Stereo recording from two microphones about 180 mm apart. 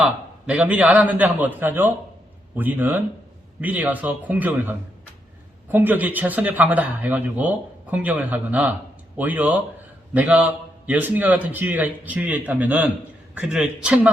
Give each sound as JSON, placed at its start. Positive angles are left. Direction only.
{"t": 0.0, "sound": "a man's voice", "side_deg": -5}